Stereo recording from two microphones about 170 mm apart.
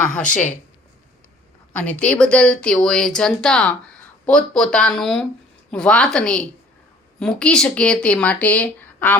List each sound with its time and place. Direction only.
0.3 s speech: 45° left (ahead or behind)
1.8 s speech: 5° left (ahead or behind)